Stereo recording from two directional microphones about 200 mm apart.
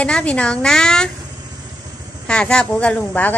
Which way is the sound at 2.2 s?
5° left (ahead or behind).